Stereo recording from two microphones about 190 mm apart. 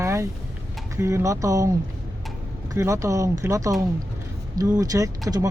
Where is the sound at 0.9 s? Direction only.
15° right (ahead or behind).